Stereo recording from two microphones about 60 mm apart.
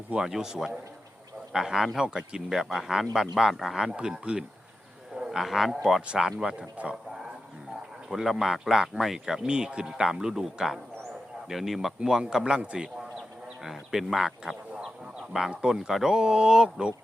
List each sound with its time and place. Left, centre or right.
0.1 s speech: centre
3.9 s speech: centre
5.1 s wild animals: centre
5.7 s speech: centre
8.1 s speech: centre
11.9 s speech: centre
13.7 s speech: centre